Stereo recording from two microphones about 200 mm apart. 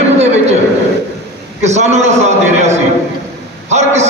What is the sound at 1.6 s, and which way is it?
A man's voice, 35° right (ahead or behind).